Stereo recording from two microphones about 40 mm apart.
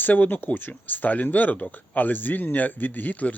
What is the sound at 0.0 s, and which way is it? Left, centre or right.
Speech, left.